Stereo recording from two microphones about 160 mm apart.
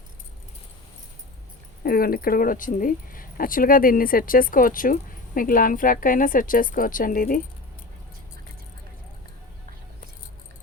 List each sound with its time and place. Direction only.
1.8 s speech: 70° left (ahead or behind)